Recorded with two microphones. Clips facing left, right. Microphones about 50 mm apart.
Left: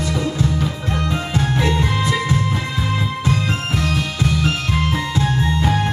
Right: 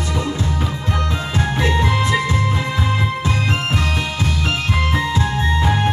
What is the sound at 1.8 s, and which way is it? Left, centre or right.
Music, right.